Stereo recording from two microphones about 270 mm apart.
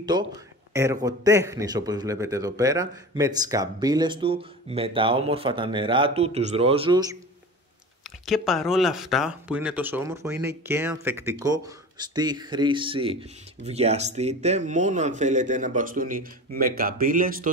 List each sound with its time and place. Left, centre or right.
0.0 s a man's voice: centre
8.3 s a man's voice: centre; by 17.5 s right